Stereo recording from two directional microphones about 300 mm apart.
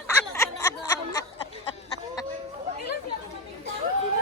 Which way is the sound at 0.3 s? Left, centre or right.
Centre.